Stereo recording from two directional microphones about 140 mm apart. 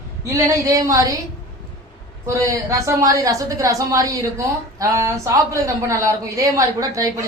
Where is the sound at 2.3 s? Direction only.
25° right (ahead or behind).